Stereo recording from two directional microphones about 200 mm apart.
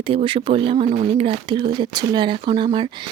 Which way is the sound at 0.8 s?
40° right (ahead or behind).